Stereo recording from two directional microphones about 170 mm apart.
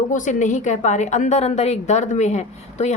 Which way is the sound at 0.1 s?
45° left (ahead or behind).